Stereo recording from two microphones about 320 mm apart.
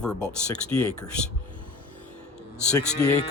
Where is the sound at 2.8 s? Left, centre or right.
Left.